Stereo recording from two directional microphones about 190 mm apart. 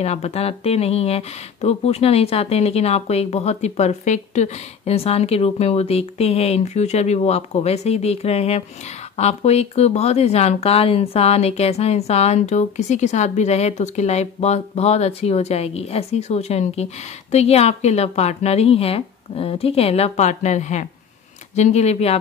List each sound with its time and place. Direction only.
0.0 s speech: 35° left (ahead or behind)